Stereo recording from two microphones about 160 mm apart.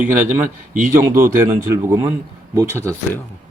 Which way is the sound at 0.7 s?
55° right (ahead or behind).